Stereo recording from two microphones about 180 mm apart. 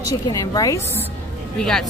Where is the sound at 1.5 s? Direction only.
5° left (ahead or behind).